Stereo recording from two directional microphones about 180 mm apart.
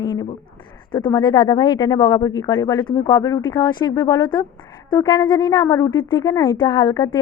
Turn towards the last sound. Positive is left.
turn(degrees=25)  # may be behind; listen again after turning